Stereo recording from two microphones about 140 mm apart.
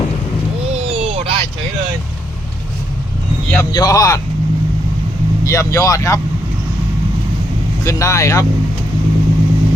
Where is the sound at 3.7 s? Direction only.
25° left (ahead or behind).